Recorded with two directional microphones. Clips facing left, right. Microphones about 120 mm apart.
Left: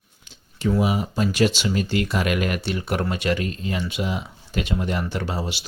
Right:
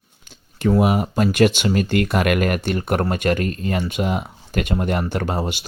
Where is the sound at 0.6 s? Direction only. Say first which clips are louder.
Right 4 dB; 55° right (ahead or behind).